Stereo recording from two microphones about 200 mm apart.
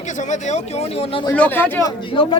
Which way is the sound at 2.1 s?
25° left (ahead or behind).